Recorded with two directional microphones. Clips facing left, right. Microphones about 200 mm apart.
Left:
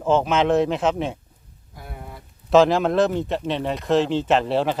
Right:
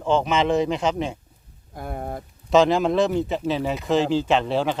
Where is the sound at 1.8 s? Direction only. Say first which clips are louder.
Right 8 dB; 50° right (ahead or behind).